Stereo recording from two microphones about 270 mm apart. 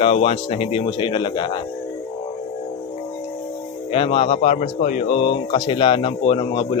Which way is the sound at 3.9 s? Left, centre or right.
Centre.